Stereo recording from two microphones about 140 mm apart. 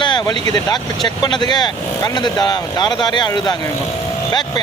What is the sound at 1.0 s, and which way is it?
Speech, 30° left (ahead or behind).